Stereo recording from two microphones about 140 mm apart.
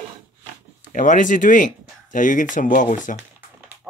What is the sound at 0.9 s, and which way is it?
Speech, 65° left (ahead or behind).